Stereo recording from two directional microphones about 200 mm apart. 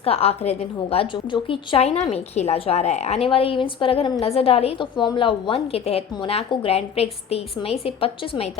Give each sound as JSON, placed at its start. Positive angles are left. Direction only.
{"t": 0.0, "sound": "a woman's voice", "side_deg": 30}